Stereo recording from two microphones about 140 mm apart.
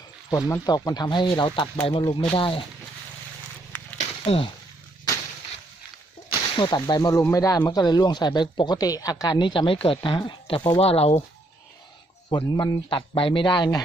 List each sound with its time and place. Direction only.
0.3 s speech: 25° left (ahead or behind)
4.3 s speech: 40° left (ahead or behind)
6.2 s speech: 35° left (ahead or behind)
10.8 s speech: 45° left (ahead or behind)
12.3 s speech: 30° left (ahead or behind)